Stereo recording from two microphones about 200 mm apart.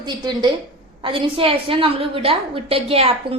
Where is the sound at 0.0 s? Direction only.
20° right (ahead or behind).